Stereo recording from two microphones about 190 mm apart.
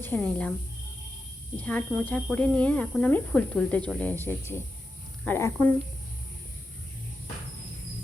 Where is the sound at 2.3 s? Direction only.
5° left (ahead or behind).